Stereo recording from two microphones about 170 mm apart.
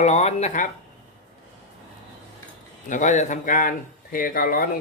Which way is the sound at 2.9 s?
45° left (ahead or behind).